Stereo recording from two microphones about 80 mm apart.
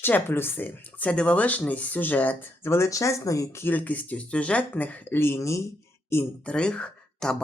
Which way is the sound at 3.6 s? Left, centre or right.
Left.